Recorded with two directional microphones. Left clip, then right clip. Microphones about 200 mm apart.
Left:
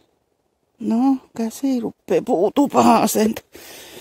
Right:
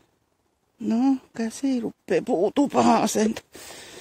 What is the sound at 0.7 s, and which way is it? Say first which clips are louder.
Speech: left 4 dB; 15° left (ahead or behind).